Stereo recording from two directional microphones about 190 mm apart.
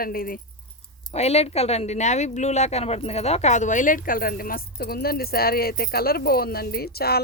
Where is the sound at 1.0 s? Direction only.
35° left (ahead or behind).